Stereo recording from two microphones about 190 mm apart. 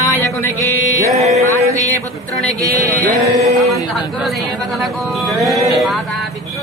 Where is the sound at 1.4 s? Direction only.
15° left (ahead or behind).